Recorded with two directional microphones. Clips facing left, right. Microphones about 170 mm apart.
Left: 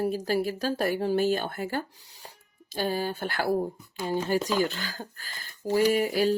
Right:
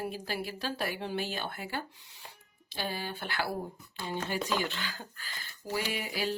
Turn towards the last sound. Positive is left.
turn(degrees=40)  # may be behind; listen again after turning